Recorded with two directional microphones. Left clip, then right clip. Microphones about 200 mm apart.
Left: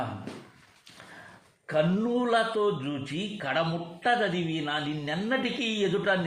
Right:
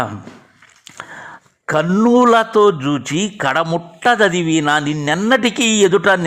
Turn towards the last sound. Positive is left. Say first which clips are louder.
# right 14 dB
turn(degrees=-50)  # may be behind; listen again after turning